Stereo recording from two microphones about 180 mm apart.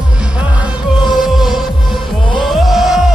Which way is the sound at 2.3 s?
Centre (ahead or behind).